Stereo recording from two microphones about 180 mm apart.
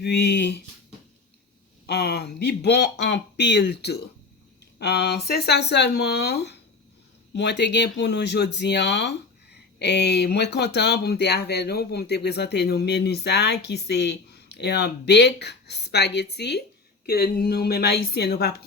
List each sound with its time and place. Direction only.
0.0 s speech: 70° left (ahead or behind)
1.9 s a woman's voice: 65° left (ahead or behind)